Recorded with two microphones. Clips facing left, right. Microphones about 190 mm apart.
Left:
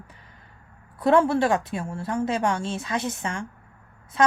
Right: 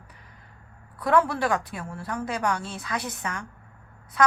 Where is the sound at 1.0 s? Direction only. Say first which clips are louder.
Left 4 dB; 25° left (ahead or behind).